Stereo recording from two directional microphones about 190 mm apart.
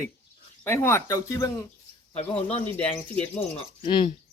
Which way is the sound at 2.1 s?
30° left (ahead or behind).